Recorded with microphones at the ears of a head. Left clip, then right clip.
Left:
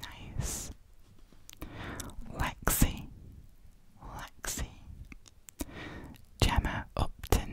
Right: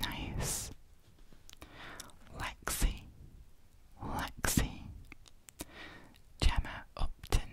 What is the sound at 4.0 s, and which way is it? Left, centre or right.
Whispering, right.